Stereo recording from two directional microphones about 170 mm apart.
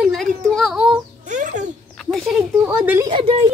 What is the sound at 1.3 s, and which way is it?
Babbling, 45° right (ahead or behind).